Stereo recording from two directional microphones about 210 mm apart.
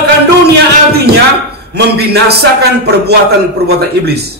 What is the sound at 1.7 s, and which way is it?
A man's voice, 50° right (ahead or behind).